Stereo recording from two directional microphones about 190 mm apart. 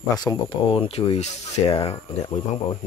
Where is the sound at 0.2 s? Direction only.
25° left (ahead or behind).